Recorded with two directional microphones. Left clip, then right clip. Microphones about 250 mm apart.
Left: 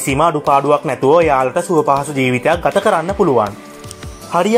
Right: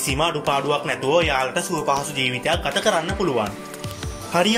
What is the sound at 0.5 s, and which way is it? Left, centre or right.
Speech, centre.